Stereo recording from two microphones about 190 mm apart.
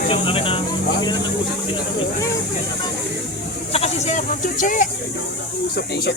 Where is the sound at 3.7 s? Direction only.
35° left (ahead or behind).